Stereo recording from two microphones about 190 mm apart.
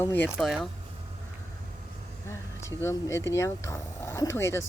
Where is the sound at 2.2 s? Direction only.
15° left (ahead or behind).